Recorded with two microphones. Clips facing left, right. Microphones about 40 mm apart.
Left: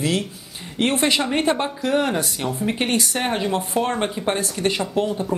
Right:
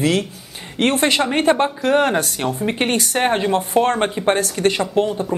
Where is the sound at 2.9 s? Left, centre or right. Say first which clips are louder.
Right 2 dB; right.